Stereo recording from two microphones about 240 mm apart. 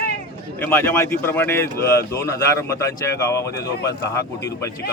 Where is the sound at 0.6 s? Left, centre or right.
Centre.